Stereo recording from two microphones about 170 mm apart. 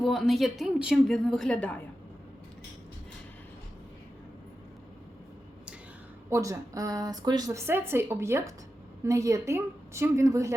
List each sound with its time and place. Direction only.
0.0 s a woman's voice: centre (ahead or behind)
6.3 s a woman's voice: 20° right (ahead or behind)